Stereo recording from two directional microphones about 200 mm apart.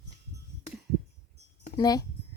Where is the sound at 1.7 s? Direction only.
20° left (ahead or behind).